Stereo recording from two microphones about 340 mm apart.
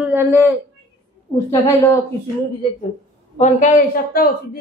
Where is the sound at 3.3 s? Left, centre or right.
Left.